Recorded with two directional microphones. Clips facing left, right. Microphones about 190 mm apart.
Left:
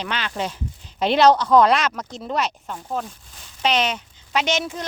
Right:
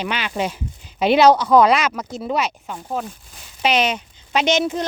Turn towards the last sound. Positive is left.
turn(degrees=-20)  # may be behind; listen again after turning